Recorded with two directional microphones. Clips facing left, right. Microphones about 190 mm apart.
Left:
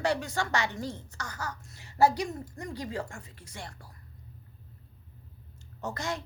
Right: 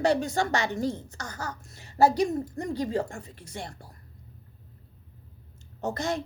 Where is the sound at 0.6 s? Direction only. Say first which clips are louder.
Right 6 dB; 45° right (ahead or behind).